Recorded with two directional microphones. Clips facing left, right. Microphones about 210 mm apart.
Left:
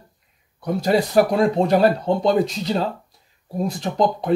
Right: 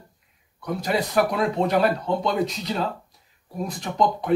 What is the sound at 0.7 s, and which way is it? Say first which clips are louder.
Speech: left 6 dB; 30° left (ahead or behind).